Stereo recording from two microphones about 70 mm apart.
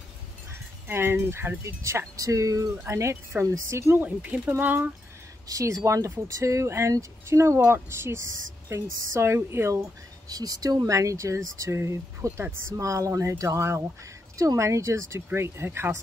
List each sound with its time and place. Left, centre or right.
0.8 s speech: right
2.1 s speech: right
2.8 s speech: right
4.0 s speech: right
5.5 s speech: right
10.3 s speech: right
10.9 s speech: right